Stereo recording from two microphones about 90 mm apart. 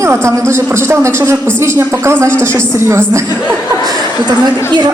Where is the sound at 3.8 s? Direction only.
50° right (ahead or behind).